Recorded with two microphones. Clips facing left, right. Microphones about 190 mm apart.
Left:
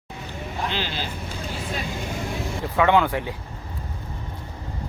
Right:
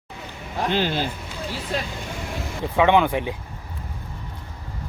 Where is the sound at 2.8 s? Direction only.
20° right (ahead or behind).